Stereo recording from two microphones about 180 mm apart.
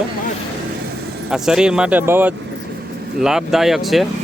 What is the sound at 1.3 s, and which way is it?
Speech, 5° right (ahead or behind).